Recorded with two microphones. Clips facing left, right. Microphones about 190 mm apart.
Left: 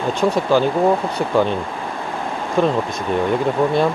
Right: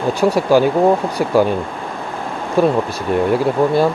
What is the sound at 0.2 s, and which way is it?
Speech, 10° right (ahead or behind).